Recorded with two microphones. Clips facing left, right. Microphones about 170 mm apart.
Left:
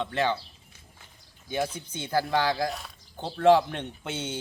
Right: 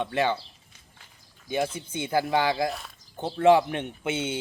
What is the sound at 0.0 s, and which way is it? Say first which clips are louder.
Speech: right 2 dB; 10° right (ahead or behind).